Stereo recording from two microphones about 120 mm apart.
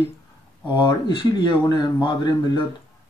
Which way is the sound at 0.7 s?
40° left (ahead or behind).